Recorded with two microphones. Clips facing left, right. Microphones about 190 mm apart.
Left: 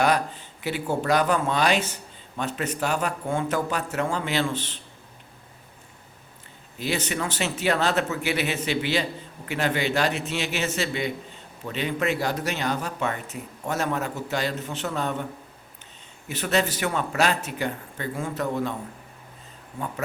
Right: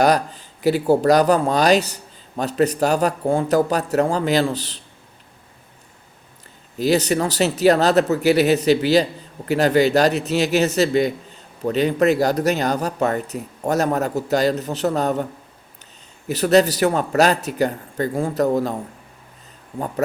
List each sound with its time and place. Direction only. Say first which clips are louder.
0.0 s speech: right 5 dB; 40° right (ahead or behind)
6.7 s speech: right 10 dB; 40° right (ahead or behind)
16.3 s speech: right 9 dB; 40° right (ahead or behind)